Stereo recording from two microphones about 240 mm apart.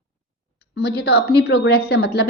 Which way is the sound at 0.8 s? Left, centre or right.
Left.